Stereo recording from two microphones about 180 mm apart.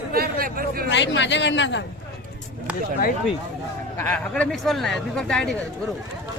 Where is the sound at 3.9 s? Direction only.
10° left (ahead or behind).